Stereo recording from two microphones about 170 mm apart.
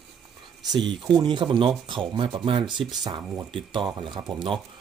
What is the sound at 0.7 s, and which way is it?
Speech, 25° right (ahead or behind).